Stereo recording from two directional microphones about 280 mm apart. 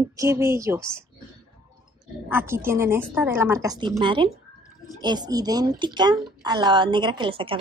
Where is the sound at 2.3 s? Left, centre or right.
Centre.